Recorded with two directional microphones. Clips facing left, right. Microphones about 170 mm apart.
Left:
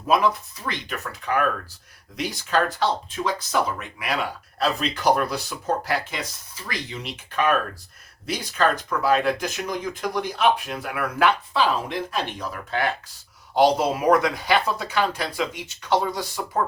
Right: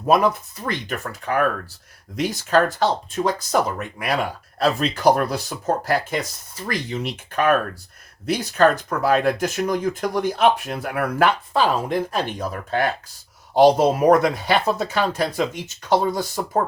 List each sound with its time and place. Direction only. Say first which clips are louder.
0.1 s speech: right 3 dB; 45° right (ahead or behind)
13.9 s speech: right 4 dB; 45° right (ahead or behind)